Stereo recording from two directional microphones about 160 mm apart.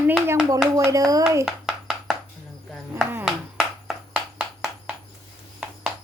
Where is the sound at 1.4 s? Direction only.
Centre (ahead or behind).